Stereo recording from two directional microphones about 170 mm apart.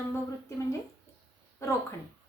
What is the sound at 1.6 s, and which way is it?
Speech, 15° left (ahead or behind).